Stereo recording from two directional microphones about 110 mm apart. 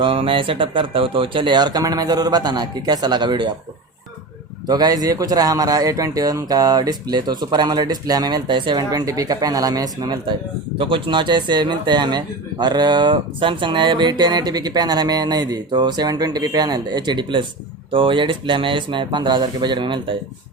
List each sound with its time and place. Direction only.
0.0 s speech: 50° right (ahead or behind)
4.6 s speech: 40° right (ahead or behind)
8.8 s speech: 35° right (ahead or behind)
10.8 s speech: 50° right (ahead or behind)